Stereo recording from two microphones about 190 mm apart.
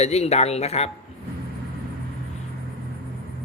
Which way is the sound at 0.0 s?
35° left (ahead or behind).